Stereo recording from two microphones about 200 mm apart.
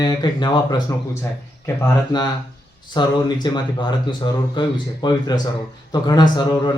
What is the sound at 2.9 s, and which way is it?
Speech, 20° left (ahead or behind).